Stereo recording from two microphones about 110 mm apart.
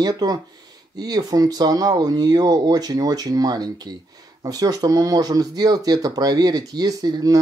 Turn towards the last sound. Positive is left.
turn(degrees=-35)  # may be behind; listen again after turning